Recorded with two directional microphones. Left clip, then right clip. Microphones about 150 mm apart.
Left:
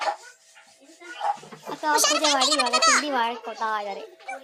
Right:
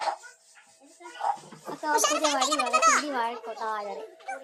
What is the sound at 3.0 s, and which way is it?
Speech, 25° left (ahead or behind).